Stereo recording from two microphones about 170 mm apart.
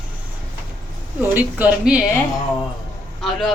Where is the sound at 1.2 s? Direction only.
10° right (ahead or behind).